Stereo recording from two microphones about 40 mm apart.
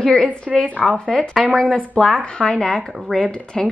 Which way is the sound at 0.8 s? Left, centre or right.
Centre.